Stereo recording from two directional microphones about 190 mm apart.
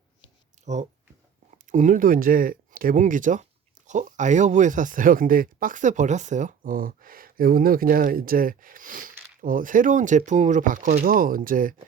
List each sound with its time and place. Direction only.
0.6 s speech: 40° right (ahead or behind)